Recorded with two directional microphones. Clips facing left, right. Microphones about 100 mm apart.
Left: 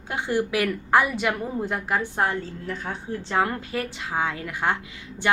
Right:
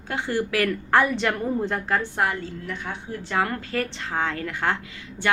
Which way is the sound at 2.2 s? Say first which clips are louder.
Even; 30° left (ahead or behind).